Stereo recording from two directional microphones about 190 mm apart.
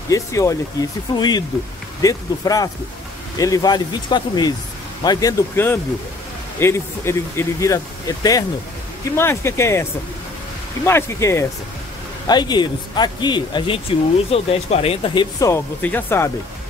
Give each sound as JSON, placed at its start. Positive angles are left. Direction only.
{"t": 0.1, "sound": "speech", "side_deg": 15}
{"t": 10.9, "sound": "speech", "side_deg": 15}